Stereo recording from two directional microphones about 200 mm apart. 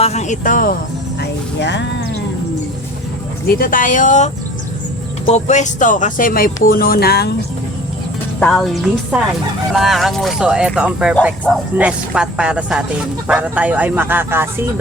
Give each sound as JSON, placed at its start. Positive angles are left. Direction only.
{"t": 0.0, "sound": "speech", "side_deg": 35}
{"t": 1.2, "sound": "music", "side_deg": 60}
{"t": 3.4, "sound": "speech", "side_deg": 45}
{"t": 8.4, "sound": "speech", "side_deg": 5}